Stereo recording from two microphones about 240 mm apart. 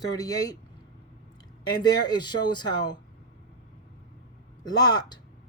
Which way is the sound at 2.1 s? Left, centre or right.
Centre.